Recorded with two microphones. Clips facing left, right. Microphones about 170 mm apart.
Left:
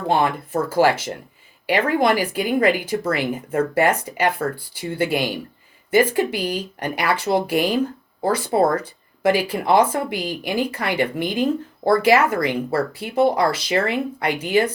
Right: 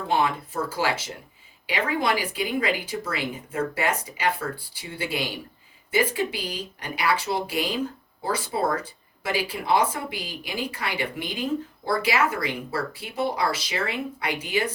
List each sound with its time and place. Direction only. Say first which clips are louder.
0.1 s speech: left 5 dB; 55° left (ahead or behind)